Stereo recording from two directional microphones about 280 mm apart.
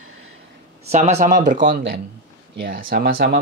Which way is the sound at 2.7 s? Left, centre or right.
Right.